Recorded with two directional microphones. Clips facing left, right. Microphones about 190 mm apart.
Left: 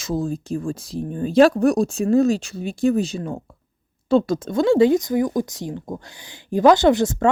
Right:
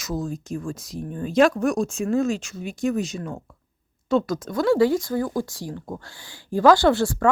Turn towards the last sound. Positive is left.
turn(degrees=20)  # may be behind; listen again after turning